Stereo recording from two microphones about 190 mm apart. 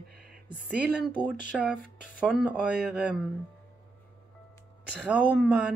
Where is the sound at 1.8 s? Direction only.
45° left (ahead or behind).